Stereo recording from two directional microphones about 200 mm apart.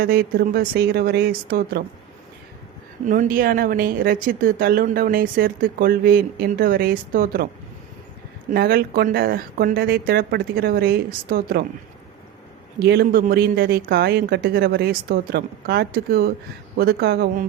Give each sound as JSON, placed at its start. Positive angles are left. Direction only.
{"t": 0.0, "sound": "speech", "side_deg": -50}
{"t": 3.1, "sound": "speech", "side_deg": -40}
{"t": 8.4, "sound": "speech", "side_deg": -50}
{"t": 12.8, "sound": "speech", "side_deg": -50}